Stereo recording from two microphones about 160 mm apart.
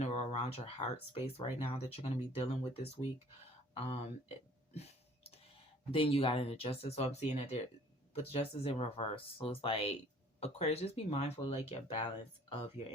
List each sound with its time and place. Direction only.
0.0 s speech: 40° left (ahead or behind)
4.7 s a sound: 40° left (ahead or behind)
5.9 s speech: 35° left (ahead or behind)